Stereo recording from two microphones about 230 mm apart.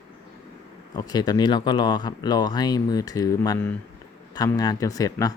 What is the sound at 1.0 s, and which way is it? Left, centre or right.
Speech, centre.